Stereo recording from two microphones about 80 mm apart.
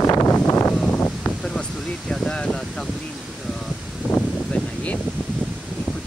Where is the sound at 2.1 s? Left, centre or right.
Centre.